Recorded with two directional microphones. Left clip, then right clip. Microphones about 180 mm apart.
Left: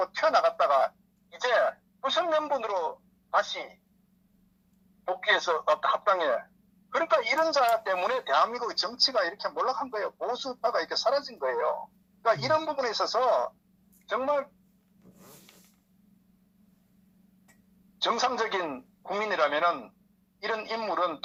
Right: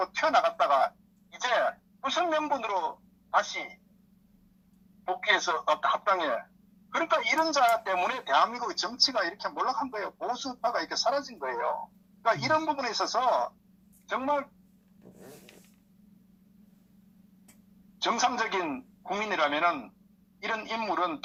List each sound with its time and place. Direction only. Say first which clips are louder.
0.0 s speech: left 1 dB; 20° left (ahead or behind)
1.3 s a sound: left 2 dB; 20° left (ahead or behind)
5.0 s speech: left 1 dB; 25° left (ahead or behind)
18.0 s speech: even; 25° left (ahead or behind)